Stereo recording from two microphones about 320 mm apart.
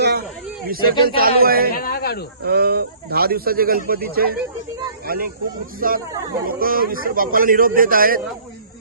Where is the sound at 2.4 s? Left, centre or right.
Right.